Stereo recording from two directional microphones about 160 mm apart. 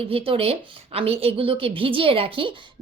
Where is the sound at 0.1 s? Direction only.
35° right (ahead or behind).